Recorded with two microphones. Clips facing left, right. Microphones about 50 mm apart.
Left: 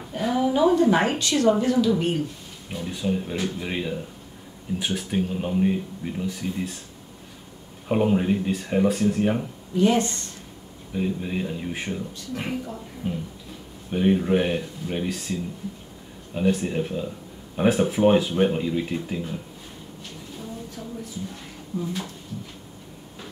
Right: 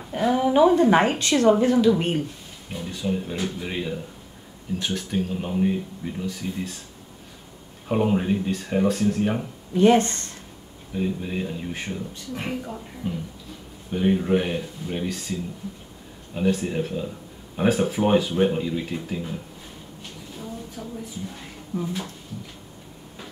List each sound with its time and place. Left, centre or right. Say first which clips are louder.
0.1 s a sound: right 2 dB; right
0.8 s speech: right 2 dB; right
2.7 s speech: left 1 dB; centre
7.9 s speech: left 1 dB; centre
9.8 s speech: right 3 dB; right
11.0 s speech: even; centre
13.0 s speech: left 1 dB; centre
13.9 s speech: left 1 dB; centre
16.3 s speech: even; centre
21.7 s speech: right 1 dB; right